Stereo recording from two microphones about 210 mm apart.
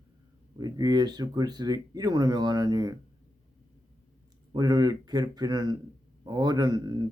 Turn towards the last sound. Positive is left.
turn(degrees=-20)  # may be behind; listen again after turning